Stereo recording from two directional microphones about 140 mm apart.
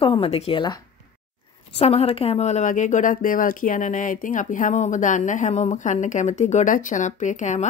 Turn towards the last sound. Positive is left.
turn(degrees=60)  # may be behind; listen again after turning